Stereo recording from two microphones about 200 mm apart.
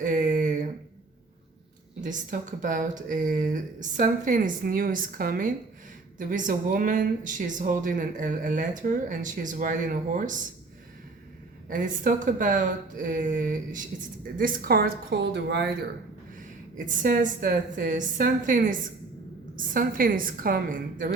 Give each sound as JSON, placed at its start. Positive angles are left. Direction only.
{"t": 0.0, "sound": "a sound", "side_deg": -40}
{"t": 2.0, "sound": "speech", "side_deg": -40}
{"t": 11.7, "sound": "a woman's voice", "side_deg": -40}
{"t": 16.4, "sound": "a woman's voice", "side_deg": -40}